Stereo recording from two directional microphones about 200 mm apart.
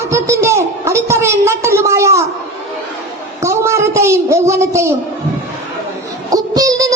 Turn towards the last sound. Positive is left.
turn(degrees=-15)  # may be behind; listen again after turning